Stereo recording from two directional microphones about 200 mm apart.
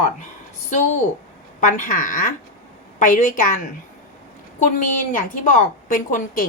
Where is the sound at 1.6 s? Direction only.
40° left (ahead or behind).